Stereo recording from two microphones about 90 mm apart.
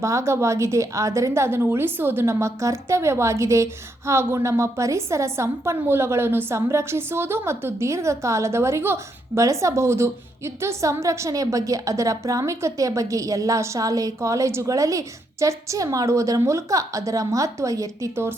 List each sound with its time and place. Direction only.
0.0 s speech: 35° right (ahead or behind)